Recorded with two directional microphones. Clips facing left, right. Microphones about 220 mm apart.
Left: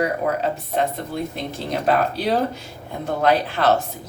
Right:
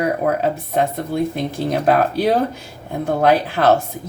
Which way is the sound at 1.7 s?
50° right (ahead or behind).